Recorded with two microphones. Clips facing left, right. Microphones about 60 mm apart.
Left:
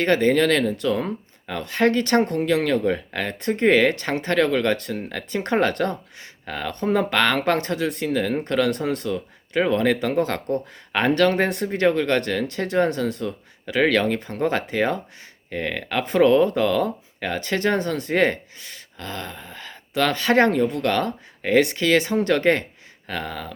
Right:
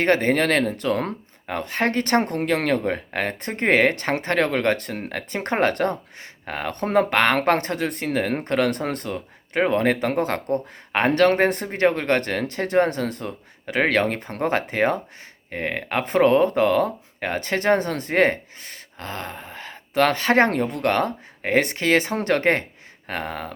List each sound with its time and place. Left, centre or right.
0.0 s speech: right
1.5 s speech: right
2.3 s speech: right
6.8 s speech: right
7.1 s speech: right